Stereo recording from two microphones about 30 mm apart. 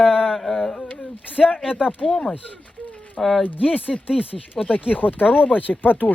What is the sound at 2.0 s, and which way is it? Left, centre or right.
Speech, left.